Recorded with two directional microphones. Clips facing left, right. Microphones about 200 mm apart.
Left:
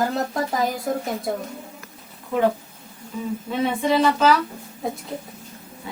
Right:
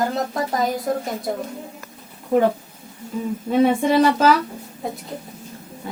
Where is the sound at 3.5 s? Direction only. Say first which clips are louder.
Right 5 dB; 45° right (ahead or behind).